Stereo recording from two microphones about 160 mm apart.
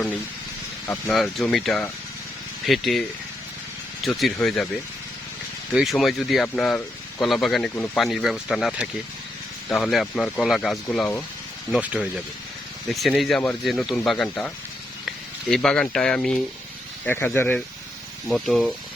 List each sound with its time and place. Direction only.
1.1 s speech: centre (ahead or behind)
5.7 s speech: centre (ahead or behind)
11.7 s speech: 10° right (ahead or behind); by 17.6 s 10° left (ahead or behind)
18.3 s speech: centre (ahead or behind)